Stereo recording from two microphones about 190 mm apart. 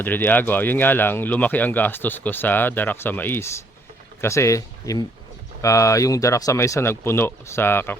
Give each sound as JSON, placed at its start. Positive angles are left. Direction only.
{"t": 0.0, "sound": "speech", "side_deg": 10}